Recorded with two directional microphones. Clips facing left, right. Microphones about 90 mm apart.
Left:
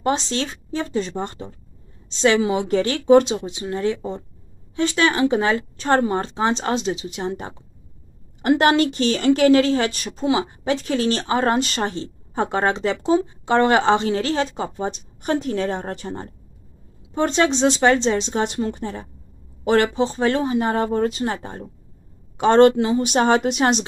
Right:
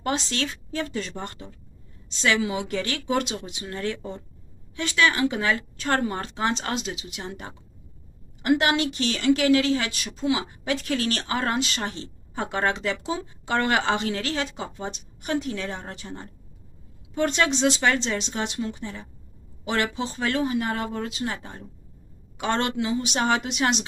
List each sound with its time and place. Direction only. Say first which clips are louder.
0.0 s speech: left 5 dB; 30° left (ahead or behind)
4.7 s speech: left 4 dB; 30° left (ahead or behind)
11.6 s speech: left 6 dB; 45° left (ahead or behind)
17.1 s speech: left 4 dB; 30° left (ahead or behind)
18.5 s a woman's voice: left 6 dB; 45° left (ahead or behind)